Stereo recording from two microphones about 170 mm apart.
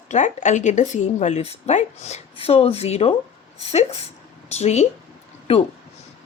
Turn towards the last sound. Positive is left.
turn(degrees=35)  # may be behind; listen again after turning